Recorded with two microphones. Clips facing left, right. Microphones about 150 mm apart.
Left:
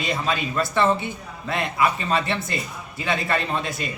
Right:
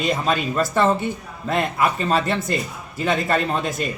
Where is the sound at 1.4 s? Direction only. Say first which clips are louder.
Right 2 dB; 45° right (ahead or behind).